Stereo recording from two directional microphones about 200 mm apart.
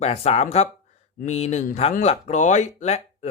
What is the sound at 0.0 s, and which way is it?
Speech, 30° left (ahead or behind).